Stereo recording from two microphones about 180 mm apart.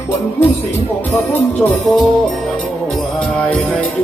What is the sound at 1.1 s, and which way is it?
Music, 5° left (ahead or behind).